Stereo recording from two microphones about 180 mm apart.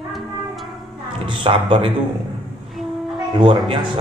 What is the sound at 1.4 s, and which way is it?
Speech, 30° right (ahead or behind).